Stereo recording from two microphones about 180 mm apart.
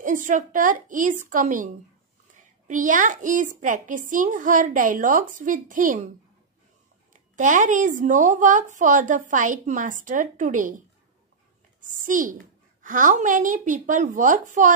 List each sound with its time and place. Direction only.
0.0 s a child's voice: 45° right (ahead or behind)
2.7 s a child's voice: 45° right (ahead or behind)
7.3 s a child's voice: 45° right (ahead or behind)
11.9 s a child's voice: 45° right (ahead or behind)